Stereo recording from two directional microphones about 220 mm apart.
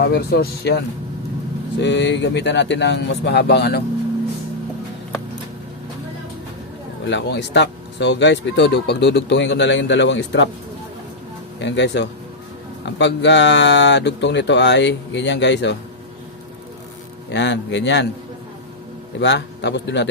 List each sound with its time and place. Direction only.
0.0 s speech: 45° left (ahead or behind)
1.8 s speech: 55° left (ahead or behind)
7.1 s speech: 55° left (ahead or behind)
11.6 s speech: 55° left (ahead or behind)
17.3 s speech: 55° left (ahead or behind)
19.2 s speech: 50° left (ahead or behind)